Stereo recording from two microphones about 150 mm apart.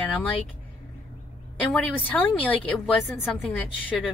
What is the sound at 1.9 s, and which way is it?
A woman's voice, 10° left (ahead or behind).